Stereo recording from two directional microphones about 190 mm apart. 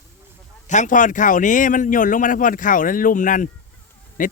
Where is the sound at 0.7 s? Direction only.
40° left (ahead or behind).